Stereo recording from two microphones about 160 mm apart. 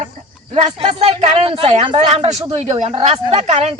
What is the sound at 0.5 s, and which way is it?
A man's voice, 45° right (ahead or behind).